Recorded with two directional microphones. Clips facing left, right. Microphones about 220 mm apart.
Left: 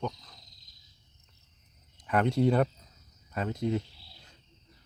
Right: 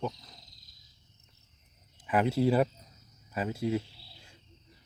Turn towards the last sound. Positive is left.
turn(degrees=-10)  # may be behind; listen again after turning